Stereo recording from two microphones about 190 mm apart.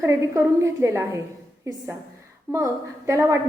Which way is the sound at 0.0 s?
15° right (ahead or behind).